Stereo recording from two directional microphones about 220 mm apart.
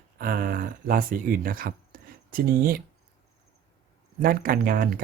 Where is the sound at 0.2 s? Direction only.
40° right (ahead or behind).